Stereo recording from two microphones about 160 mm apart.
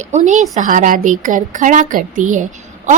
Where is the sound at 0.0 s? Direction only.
50° right (ahead or behind).